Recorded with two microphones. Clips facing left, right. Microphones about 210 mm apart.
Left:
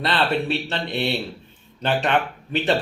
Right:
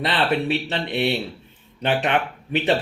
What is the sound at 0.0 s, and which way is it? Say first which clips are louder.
Speech: right 1 dB; 15° right (ahead or behind).